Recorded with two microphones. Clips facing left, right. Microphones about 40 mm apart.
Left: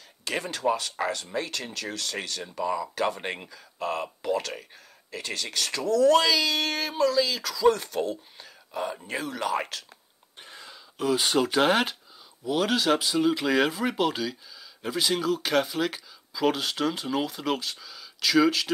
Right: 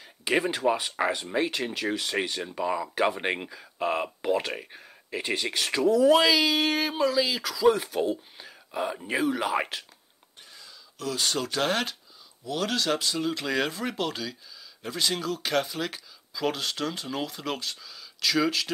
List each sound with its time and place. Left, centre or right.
0.2 s speech: centre
10.5 s speech: left; by 18.7 s centre